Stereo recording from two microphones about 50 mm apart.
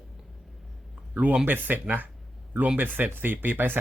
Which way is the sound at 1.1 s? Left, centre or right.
Right.